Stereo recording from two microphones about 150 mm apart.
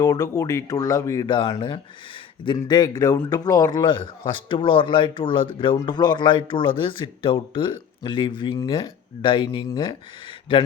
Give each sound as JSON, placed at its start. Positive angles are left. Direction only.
{"t": 0.0, "sound": "speech", "side_deg": 25}
{"t": 1.3, "sound": "speech", "side_deg": 30}